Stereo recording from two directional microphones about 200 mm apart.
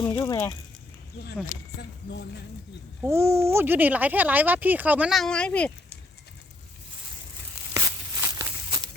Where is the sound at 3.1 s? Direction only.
15° right (ahead or behind); by 5.7 s 5° left (ahead or behind).